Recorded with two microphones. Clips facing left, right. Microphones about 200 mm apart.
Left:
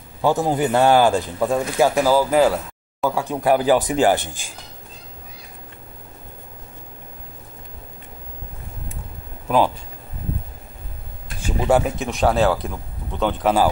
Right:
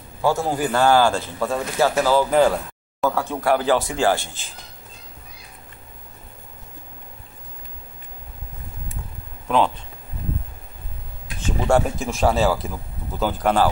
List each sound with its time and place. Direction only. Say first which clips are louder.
0.2 s speech: left 2 dB; 15° left (ahead or behind)
11.4 s speech: left 1 dB; 5° left (ahead or behind)